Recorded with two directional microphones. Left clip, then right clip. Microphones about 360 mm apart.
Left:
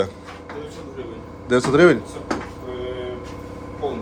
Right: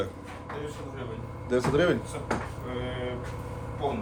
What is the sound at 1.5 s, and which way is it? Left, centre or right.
Speech, centre.